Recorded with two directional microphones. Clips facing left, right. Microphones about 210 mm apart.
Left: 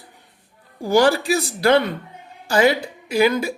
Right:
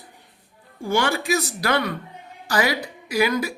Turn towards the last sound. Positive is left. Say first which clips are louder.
# left 4 dB
turn(degrees=25)  # may be behind; listen again after turning